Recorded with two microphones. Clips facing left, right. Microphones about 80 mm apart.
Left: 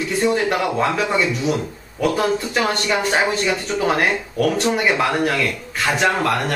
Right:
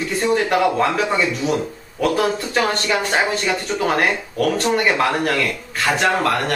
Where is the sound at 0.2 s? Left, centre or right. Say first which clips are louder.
Right 2 dB; centre.